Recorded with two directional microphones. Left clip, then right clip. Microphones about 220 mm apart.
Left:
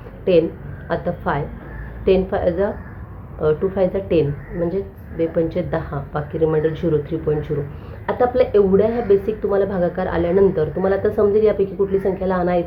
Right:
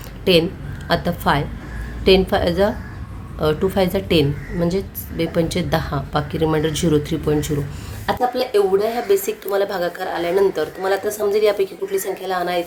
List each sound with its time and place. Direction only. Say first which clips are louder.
0.9 s a woman's voice: right 3 dB; 40° right (ahead or behind)
8.0 s a woman's voice: left 3 dB; 30° right (ahead or behind)